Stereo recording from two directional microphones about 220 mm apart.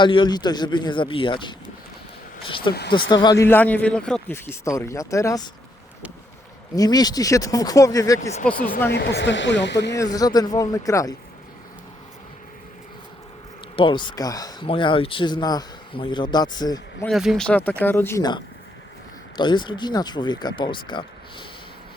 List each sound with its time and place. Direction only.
0.0 s speech: 20° left (ahead or behind)
2.7 s a man's voice: 20° left (ahead or behind)
6.7 s a man's voice: 15° left (ahead or behind)
8.5 s speech: 40° left (ahead or behind)
10.0 s a man's voice: 15° left (ahead or behind)
13.7 s speech: 20° left (ahead or behind)
17.1 s a man's voice: centre (ahead or behind); by 21.4 s 20° left (ahead or behind)